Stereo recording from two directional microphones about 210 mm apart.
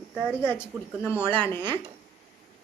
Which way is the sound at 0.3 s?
10° left (ahead or behind).